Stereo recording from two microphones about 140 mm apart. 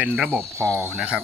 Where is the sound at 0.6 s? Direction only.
20° right (ahead or behind).